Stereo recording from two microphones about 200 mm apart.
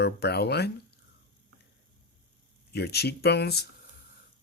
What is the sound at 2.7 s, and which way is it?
Speech, 55° left (ahead or behind).